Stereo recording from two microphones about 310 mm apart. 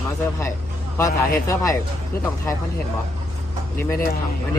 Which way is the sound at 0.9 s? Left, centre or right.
Centre.